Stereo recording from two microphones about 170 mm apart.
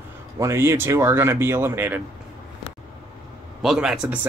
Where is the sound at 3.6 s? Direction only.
Centre (ahead or behind).